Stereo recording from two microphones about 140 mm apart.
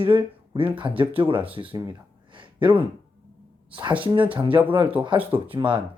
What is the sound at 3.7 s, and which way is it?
Speech, 35° right (ahead or behind).